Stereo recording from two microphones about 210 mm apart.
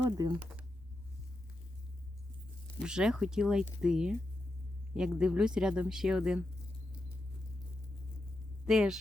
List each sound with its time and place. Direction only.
0.2 s speech: 15° right (ahead or behind)
2.8 s speech: 5° right (ahead or behind)
8.6 s speech: centre (ahead or behind)